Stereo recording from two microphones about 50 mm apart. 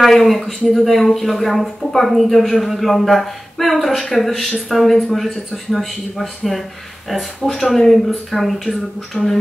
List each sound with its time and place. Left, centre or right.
0.0 s speech: centre